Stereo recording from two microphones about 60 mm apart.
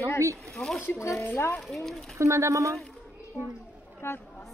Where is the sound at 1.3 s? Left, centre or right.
Left.